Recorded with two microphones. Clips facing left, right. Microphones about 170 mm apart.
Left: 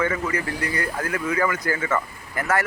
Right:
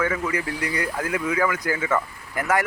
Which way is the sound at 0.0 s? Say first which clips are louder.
Even; 10° right (ahead or behind).